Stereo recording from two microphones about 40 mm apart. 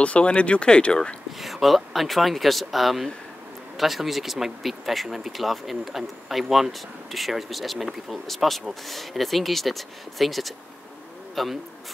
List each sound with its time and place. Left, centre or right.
0.0 s speech: left
1.4 s speech: centre